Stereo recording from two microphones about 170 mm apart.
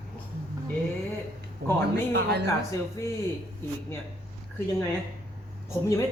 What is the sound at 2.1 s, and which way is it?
Speech, 80° right.